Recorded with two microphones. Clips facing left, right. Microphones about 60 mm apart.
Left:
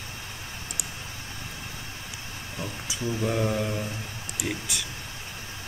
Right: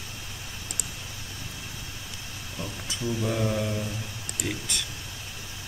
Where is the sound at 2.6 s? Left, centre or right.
Centre.